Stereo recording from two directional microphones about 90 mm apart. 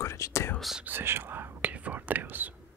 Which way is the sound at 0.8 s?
25° right (ahead or behind).